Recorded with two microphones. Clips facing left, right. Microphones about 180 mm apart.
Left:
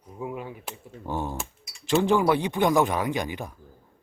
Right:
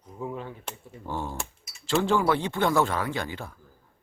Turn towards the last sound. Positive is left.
turn(degrees=15)  # may be behind; listen again after turning